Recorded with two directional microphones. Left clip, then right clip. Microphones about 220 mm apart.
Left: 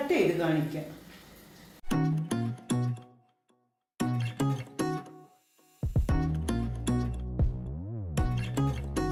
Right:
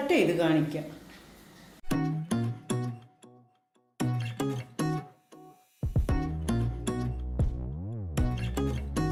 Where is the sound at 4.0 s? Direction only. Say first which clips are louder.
Left 1 dB; centre (ahead or behind).